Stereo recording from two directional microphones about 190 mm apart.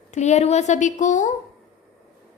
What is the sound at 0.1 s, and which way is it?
A woman's voice, 35° left (ahead or behind).